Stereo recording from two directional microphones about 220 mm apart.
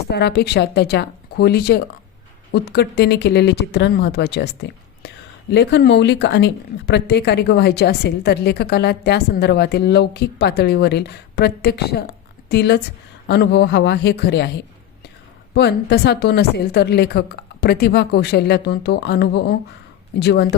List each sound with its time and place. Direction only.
0.1 s speech: 50° left (ahead or behind)